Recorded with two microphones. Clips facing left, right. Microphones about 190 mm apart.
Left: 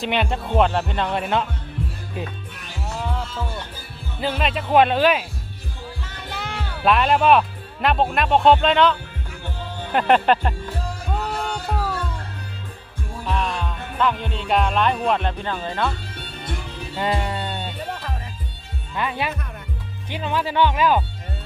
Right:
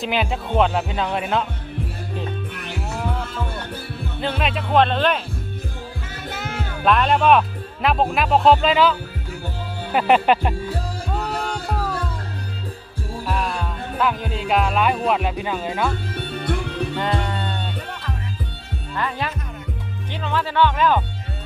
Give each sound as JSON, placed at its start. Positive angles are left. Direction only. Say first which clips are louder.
{"t": 0.0, "sound": "speech", "louder": "even", "side_deg": 0}
{"t": 4.2, "sound": "speech", "louder": "left 1 dB", "side_deg": 0}
{"t": 6.1, "sound": "music", "louder": "right 2 dB", "side_deg": -5}
{"t": 6.8, "sound": "speech", "louder": "even", "side_deg": 5}
{"t": 13.2, "sound": "speech", "louder": "even", "side_deg": -5}
{"t": 16.1, "sound": "music", "louder": "right 8 dB", "side_deg": -60}
{"t": 17.0, "sound": "music", "louder": "left 4 dB", "side_deg": 10}
{"t": 18.9, "sound": "speech", "louder": "left 1 dB", "side_deg": 15}